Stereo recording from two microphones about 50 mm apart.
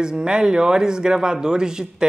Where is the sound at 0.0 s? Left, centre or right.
Centre.